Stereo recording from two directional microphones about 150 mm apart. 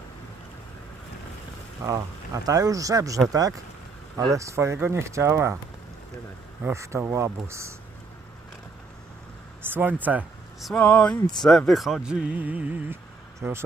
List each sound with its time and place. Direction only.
1.8 s speech: 20° right (ahead or behind)
6.6 s speech: 15° right (ahead or behind)
9.6 s speech: 15° right (ahead or behind)
10.7 s speech: 5° left (ahead or behind); by 13.7 s 15° right (ahead or behind)